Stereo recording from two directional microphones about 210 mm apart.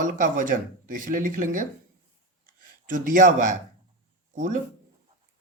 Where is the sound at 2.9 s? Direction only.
40° right (ahead or behind).